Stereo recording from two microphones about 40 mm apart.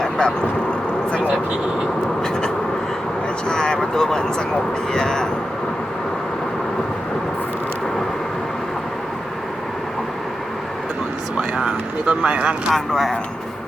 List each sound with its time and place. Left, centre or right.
0.0 s vehicle: left
3.5 s speech: centre
4.9 s cat: centre
11.3 s a sound: right
12.7 s speech: centre